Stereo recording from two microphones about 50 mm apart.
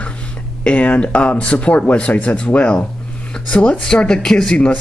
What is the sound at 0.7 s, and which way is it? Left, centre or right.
Speech, left.